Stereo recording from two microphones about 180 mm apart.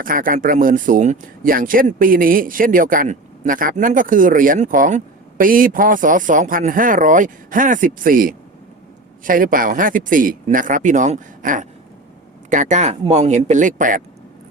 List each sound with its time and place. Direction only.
0.0 s speech: 50° right (ahead or behind)